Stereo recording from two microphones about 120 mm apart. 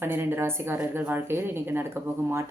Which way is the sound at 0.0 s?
20° right (ahead or behind).